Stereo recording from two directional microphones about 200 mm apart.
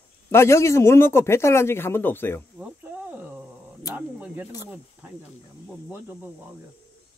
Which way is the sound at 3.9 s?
10° right (ahead or behind).